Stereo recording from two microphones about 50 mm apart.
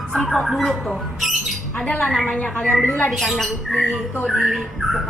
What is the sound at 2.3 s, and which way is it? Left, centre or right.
Speech, left.